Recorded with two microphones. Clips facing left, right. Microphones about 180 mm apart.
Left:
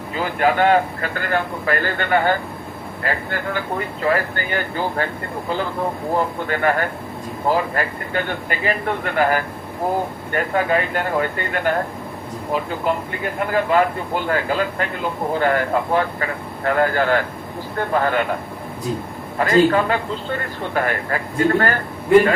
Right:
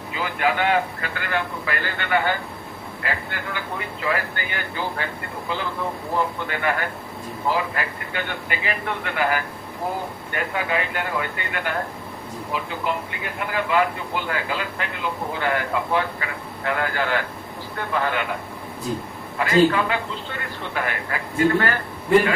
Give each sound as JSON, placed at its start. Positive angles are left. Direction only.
{"t": 0.1, "sound": "a man's voice", "side_deg": 45}
{"t": 6.5, "sound": "a man's voice", "side_deg": 45}
{"t": 19.4, "sound": "a man's voice", "side_deg": 45}